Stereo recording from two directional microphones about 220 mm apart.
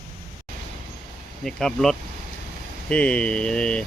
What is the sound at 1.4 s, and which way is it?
Speech, centre (ahead or behind).